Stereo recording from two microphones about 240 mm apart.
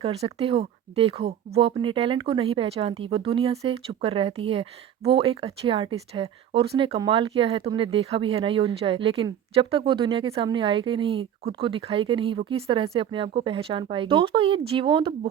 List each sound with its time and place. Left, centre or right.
0.0 s speech: right